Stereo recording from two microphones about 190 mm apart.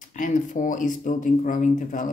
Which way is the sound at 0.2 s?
40° left (ahead or behind).